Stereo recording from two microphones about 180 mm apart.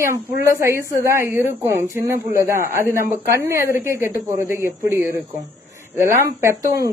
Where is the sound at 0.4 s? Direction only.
15° right (ahead or behind).